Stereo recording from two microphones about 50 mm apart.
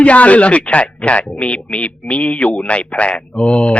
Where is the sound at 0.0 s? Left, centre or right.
Left.